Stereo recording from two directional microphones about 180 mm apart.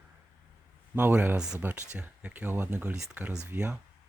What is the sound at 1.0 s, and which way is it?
Speech, 10° right (ahead or behind).